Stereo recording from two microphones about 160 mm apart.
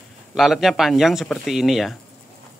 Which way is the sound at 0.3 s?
Centre (ahead or behind).